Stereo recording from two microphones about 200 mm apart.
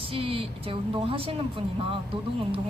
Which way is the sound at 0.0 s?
25° right (ahead or behind).